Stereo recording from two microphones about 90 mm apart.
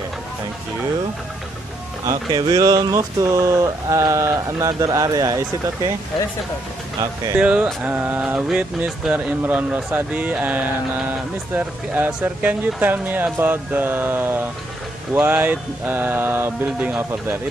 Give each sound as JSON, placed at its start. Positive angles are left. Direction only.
{"t": 2.0, "sound": "speech", "side_deg": -40}
{"t": 7.3, "sound": "speech", "side_deg": -15}